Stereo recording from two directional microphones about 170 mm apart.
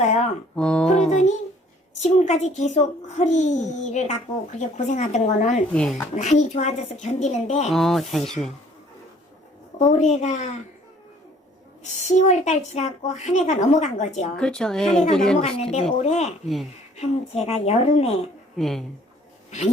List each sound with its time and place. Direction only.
0.0 s a child's voice: 40° left (ahead or behind)
0.5 s speech: 5° left (ahead or behind)
2.0 s a child's voice: 40° left (ahead or behind)
5.7 s speech: 5° left (ahead or behind)
6.1 s a woman's voice: 45° left (ahead or behind)
7.7 s speech: centre (ahead or behind)
9.7 s a child's voice: 45° left (ahead or behind)
11.8 s a child's voice: 45° left (ahead or behind)
14.3 s speech: 5° left (ahead or behind)
15.4 s a woman's voice: 40° left (ahead or behind)
18.5 s speech: centre (ahead or behind)